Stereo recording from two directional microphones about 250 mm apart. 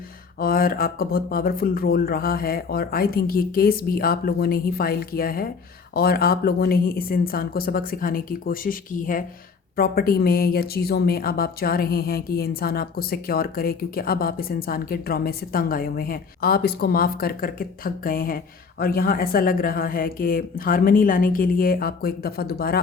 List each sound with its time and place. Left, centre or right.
0.3 s a woman's voice: left